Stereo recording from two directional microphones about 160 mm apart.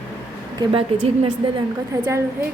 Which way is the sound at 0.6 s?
35° right (ahead or behind).